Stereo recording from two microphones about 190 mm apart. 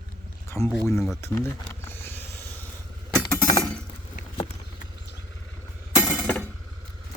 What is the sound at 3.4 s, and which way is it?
Glass, 20° left (ahead or behind).